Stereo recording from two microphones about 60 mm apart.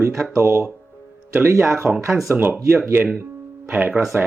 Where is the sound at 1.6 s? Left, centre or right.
Right.